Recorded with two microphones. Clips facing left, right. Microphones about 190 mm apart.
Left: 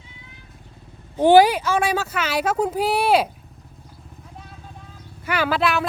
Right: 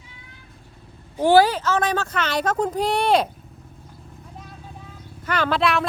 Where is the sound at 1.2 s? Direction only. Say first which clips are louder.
Left 2 dB; 15° left (ahead or behind).